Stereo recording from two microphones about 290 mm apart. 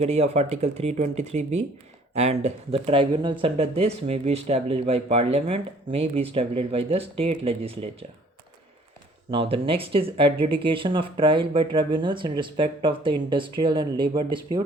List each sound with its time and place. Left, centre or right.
0.0 s speech: right
9.3 s speech: centre